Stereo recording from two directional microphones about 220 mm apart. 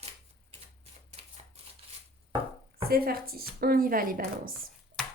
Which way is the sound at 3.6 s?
40° right (ahead or behind).